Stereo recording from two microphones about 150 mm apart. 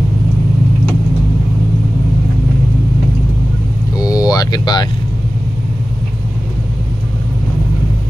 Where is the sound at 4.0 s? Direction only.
25° left (ahead or behind).